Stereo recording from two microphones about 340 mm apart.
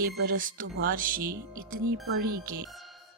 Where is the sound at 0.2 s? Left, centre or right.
Right.